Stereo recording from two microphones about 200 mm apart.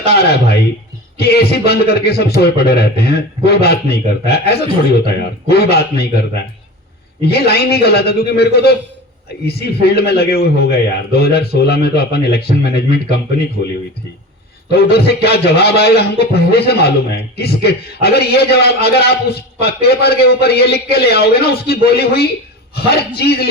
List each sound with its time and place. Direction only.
0.0 s a man's voice: 50° left (ahead or behind)
14.7 s a man's voice: 55° left (ahead or behind)